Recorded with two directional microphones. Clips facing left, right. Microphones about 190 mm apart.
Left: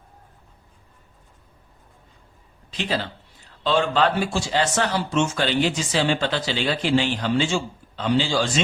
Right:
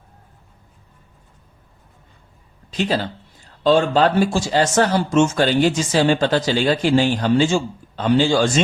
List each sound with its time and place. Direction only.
2.6 s speech: 40° right (ahead or behind)